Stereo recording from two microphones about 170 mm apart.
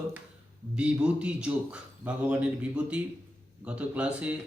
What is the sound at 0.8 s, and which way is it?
Speech, 5° right (ahead or behind).